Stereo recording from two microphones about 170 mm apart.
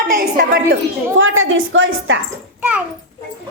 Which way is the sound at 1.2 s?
90° right.